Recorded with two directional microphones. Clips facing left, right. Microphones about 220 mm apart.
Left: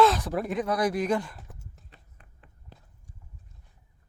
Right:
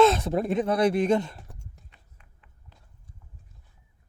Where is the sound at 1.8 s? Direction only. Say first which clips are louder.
Left 3 dB; 35° left (ahead or behind).